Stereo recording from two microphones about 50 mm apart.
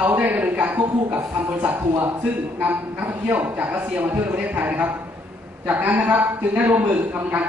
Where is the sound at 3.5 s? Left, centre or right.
Right.